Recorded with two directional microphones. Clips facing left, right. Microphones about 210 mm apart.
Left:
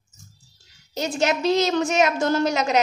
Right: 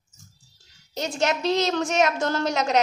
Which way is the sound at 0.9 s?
5° left (ahead or behind).